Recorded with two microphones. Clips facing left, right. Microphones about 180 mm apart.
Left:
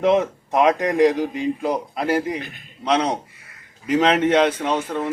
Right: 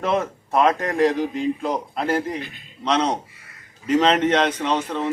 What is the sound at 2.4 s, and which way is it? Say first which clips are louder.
Speech: even; 50° left (ahead or behind).